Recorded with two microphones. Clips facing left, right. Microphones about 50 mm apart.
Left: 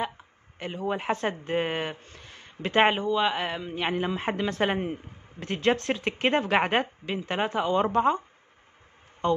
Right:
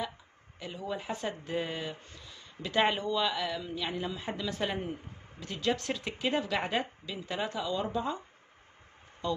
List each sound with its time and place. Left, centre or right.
0.6 s a woman's voice: left
3.0 s speech: left
3.3 s a woman's voice: left
9.2 s a man's voice: left